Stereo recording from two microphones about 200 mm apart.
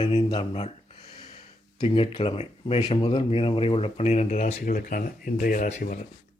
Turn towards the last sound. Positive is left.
turn(degrees=35)  # may be behind; listen again after turning